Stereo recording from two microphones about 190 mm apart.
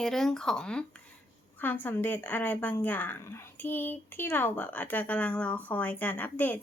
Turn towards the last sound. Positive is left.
turn(degrees=10)  # may be behind; listen again after turning